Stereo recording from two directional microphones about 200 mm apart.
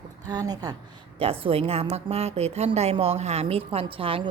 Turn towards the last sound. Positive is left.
turn(degrees=-25)  # may be behind; listen again after turning